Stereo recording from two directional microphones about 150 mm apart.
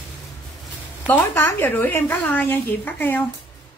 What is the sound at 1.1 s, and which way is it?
A woman's voice, 15° left (ahead or behind).